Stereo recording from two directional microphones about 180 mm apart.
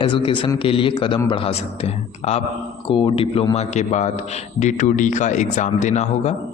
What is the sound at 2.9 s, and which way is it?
A man's voice, 30° left (ahead or behind).